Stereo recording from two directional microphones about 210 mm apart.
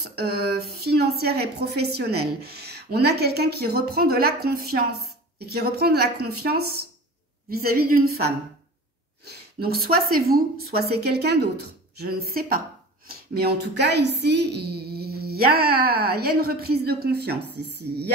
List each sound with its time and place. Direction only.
0.0 s a woman's voice: 50° right (ahead or behind)
9.2 s a woman's voice: 50° right (ahead or behind)